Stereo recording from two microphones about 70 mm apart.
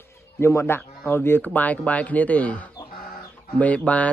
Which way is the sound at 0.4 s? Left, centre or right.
Left.